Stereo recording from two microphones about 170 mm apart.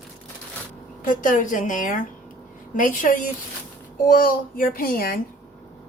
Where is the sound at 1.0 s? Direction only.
50° left (ahead or behind).